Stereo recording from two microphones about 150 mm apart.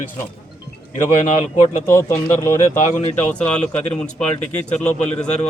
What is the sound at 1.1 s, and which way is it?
Speech, 45° left (ahead or behind).